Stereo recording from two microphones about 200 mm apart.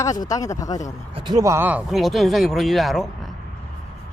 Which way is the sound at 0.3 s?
15° left (ahead or behind).